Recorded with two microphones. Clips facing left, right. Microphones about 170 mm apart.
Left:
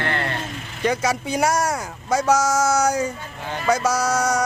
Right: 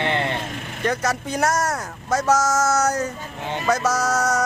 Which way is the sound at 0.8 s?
Centre (ahead or behind).